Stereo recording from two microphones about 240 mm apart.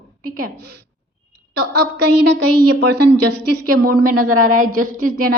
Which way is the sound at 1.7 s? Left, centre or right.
Right.